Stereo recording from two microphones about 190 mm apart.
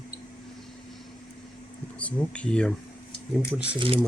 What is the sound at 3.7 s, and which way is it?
Speech, 30° right (ahead or behind).